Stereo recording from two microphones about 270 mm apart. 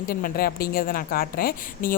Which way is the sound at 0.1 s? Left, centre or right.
Left.